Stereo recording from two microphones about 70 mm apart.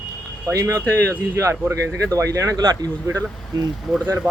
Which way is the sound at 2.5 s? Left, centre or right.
Right.